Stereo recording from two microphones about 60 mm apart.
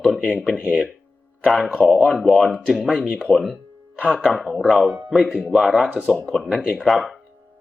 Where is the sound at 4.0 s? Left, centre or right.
Right.